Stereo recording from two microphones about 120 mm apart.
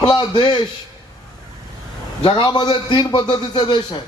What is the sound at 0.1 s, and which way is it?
Speech, 35° left (ahead or behind).